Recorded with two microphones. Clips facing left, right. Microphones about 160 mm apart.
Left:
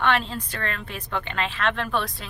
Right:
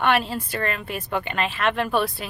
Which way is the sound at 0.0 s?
10° right (ahead or behind).